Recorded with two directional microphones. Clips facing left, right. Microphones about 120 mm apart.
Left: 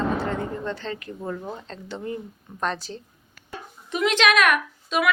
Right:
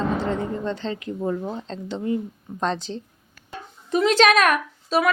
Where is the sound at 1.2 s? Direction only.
15° right (ahead or behind); by 5.1 s 35° right (ahead or behind).